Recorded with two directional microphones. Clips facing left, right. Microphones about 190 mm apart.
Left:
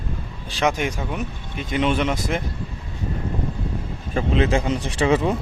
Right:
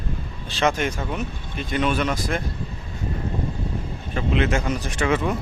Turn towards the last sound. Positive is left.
turn(degrees=30)  # may be behind; listen again after turning